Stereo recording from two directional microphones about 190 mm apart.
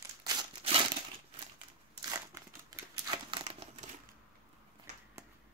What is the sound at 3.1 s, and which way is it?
Crumpling, 30° right (ahead or behind).